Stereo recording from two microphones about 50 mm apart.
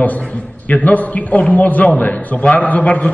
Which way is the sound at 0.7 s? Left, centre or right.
Left.